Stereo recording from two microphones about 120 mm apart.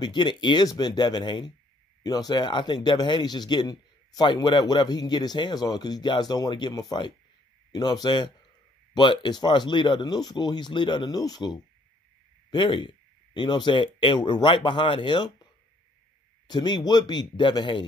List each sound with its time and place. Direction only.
0.0 s speech: 40° left (ahead or behind)
16.4 s speech: 35° left (ahead or behind)